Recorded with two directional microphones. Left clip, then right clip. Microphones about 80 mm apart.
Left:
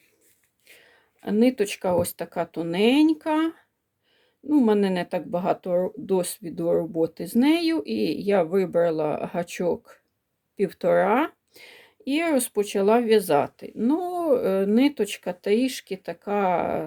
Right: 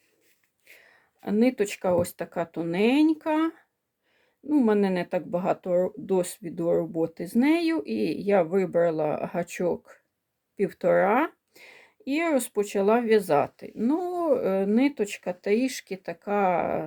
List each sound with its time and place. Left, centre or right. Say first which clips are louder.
0.6 s speech: left 1 dB; centre